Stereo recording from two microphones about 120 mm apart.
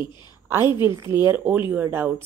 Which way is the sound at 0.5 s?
20° right (ahead or behind).